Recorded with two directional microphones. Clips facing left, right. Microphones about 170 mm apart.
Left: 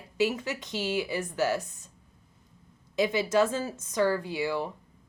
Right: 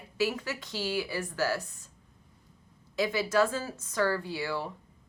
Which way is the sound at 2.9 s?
20° left (ahead or behind).